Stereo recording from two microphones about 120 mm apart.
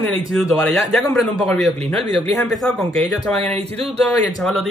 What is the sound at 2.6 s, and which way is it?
Speech, 5° left (ahead or behind).